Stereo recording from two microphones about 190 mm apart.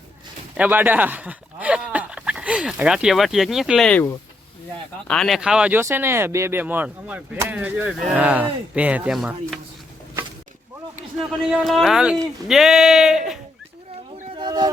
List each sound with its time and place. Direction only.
0.5 s speech: 10° right (ahead or behind)
11.3 s speech: centre (ahead or behind)
14.3 s a sound: 20° right (ahead or behind)